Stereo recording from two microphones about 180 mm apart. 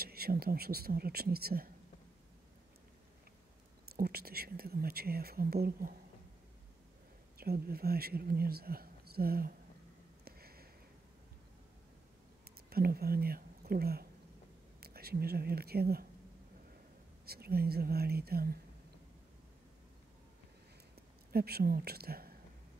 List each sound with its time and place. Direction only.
0.0 s speech: 60° right (ahead or behind)
3.9 s speech: 60° right (ahead or behind)
7.3 s speech: 55° right (ahead or behind)
10.2 s a sound: 60° right (ahead or behind)
12.6 s speech: 60° right (ahead or behind)
17.3 s speech: 60° right (ahead or behind)
21.3 s speech: 60° right (ahead or behind)